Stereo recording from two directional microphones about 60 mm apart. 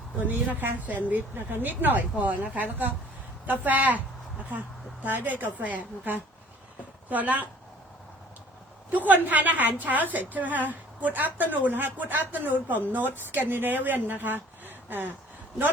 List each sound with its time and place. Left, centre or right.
0.3 s a woman's voice: right
5.0 s a woman's voice: right
9.0 s a woman's voice: right